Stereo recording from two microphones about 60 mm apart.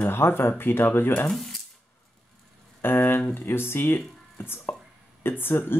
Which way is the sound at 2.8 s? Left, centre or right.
Left.